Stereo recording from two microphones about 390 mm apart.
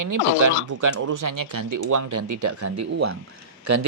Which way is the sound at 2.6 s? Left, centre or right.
Right.